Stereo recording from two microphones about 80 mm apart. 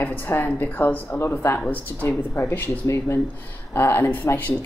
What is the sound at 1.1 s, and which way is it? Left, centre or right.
A woman's voice, left.